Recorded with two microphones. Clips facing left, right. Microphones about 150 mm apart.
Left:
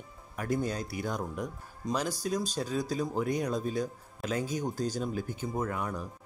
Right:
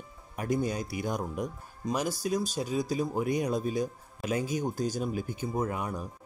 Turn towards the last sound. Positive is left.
turn(degrees=-15)  # may be behind; listen again after turning